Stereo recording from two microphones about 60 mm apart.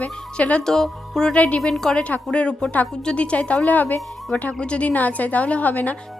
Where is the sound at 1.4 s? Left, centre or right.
Left.